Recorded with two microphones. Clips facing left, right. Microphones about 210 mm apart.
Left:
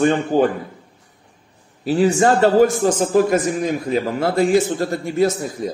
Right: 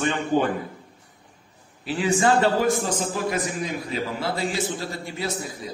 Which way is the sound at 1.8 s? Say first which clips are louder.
Left 6 dB; 40° left (ahead or behind).